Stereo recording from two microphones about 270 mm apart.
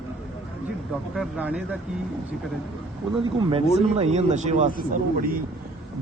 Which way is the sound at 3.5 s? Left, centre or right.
Right.